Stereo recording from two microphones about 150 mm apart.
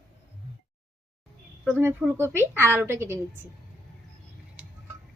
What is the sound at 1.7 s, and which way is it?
A woman's voice, 15° right (ahead or behind).